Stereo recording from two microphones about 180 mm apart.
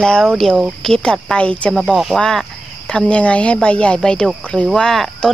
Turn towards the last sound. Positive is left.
turn(degrees=0)  # may be behind; listen again after turning